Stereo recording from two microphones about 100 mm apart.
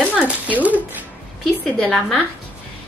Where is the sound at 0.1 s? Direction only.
10° right (ahead or behind).